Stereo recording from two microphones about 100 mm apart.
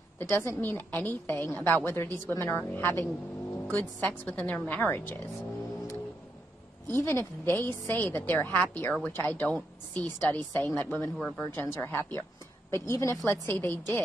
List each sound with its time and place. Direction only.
0.2 s a woman's voice: 20° left (ahead or behind)
11.1 s a woman's voice: 5° left (ahead or behind)
11.4 s a woman's voice: 20° left (ahead or behind)